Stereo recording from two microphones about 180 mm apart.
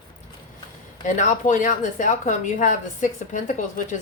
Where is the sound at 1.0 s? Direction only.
45° left (ahead or behind).